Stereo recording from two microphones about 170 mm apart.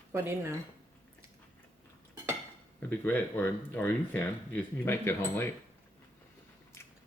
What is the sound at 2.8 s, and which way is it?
Speech, 10° left (ahead or behind).